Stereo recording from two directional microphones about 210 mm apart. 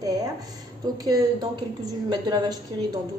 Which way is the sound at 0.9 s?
20° right (ahead or behind).